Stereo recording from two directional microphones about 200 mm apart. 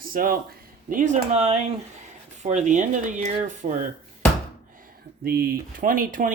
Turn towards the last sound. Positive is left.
turn(degrees=-45)  # may be behind; listen again after turning